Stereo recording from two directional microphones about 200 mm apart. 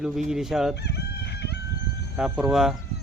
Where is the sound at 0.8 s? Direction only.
55° left (ahead or behind).